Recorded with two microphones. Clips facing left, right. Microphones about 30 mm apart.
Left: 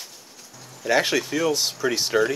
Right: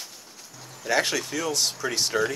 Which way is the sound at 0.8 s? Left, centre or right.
Centre.